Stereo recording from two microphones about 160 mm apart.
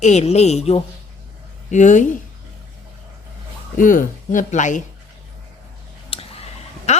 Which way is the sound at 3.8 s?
55° left (ahead or behind).